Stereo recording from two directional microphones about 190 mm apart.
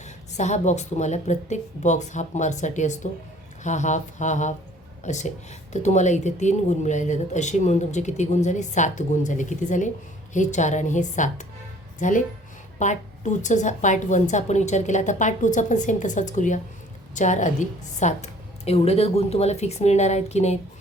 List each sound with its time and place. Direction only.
0.0 s speech: 35° left (ahead or behind)